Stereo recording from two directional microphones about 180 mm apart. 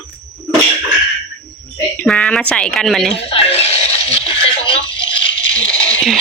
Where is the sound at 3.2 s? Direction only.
30° left (ahead or behind).